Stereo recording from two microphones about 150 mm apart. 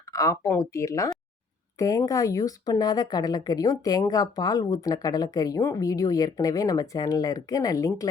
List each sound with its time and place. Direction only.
0.1 s speech: 20° left (ahead or behind)